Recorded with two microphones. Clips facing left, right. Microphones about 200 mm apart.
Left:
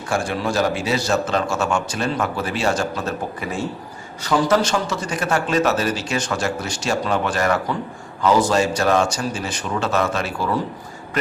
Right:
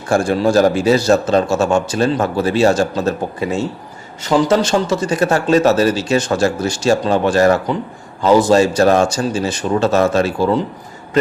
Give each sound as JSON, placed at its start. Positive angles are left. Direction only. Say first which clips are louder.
{"t": 0.1, "sound": "speech", "louder": "right 9 dB", "side_deg": -40}
{"t": 3.4, "sound": "a man's voice", "louder": "right 6 dB", "side_deg": -25}
{"t": 9.2, "sound": "speech", "louder": "right 7 dB", "side_deg": -30}